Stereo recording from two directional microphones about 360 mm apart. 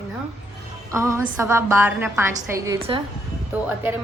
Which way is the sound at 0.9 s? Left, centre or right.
Centre.